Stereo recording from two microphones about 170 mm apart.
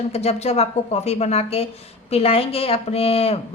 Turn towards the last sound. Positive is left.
turn(degrees=35)  # may be behind; listen again after turning